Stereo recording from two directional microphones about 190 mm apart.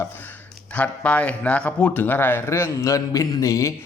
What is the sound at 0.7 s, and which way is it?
A man's voice, 5° left (ahead or behind).